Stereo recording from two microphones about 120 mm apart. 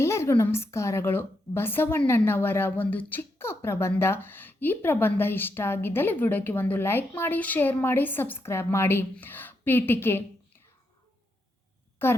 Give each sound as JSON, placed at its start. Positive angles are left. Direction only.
{"t": 0.0, "sound": "a woman's voice", "side_deg": 25}
{"t": 12.0, "sound": "a woman's voice", "side_deg": 20}